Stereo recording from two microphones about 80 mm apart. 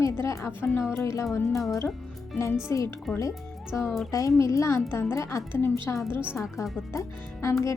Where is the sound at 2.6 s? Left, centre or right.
Left.